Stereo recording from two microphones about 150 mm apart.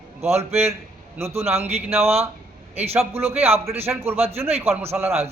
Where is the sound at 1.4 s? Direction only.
15° right (ahead or behind).